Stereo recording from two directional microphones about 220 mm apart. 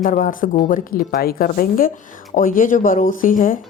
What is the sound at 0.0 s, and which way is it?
A woman's voice, 40° left (ahead or behind).